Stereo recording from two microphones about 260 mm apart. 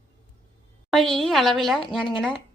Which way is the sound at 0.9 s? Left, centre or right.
Centre.